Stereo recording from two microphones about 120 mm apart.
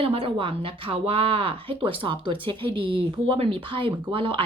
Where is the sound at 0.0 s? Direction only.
50° right (ahead or behind).